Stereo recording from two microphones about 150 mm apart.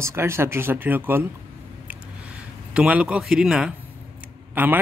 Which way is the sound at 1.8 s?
10° right (ahead or behind).